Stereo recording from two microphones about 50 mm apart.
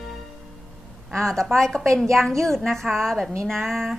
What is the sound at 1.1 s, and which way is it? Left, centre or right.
A woman's voice, centre.